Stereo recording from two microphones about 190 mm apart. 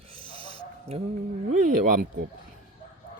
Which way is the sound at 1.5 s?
45° right (ahead or behind).